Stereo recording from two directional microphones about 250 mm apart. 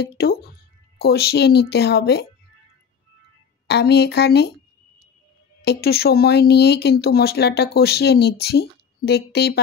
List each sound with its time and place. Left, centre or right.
0.0 s a sound: left
0.9 s speech: left
3.6 s speech: left
5.6 s speech: left